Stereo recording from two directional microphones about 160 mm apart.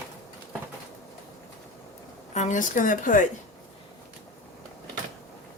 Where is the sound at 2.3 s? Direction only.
50° left (ahead or behind).